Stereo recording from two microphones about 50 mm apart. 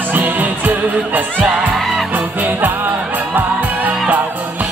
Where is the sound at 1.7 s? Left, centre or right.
Centre.